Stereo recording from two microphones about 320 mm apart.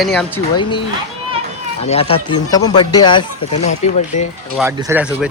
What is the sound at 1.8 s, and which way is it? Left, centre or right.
Speech, centre.